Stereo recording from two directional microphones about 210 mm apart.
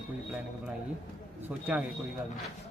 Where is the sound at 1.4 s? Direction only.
5° right (ahead or behind).